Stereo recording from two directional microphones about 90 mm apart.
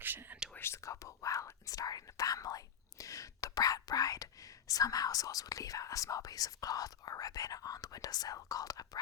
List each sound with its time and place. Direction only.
0.0 s whispering: 20° right (ahead or behind)
0.5 s whispering: 30° left (ahead or behind)
4.7 s speech: 40° left (ahead or behind)